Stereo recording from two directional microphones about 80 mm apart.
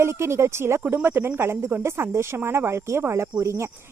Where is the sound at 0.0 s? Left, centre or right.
Right.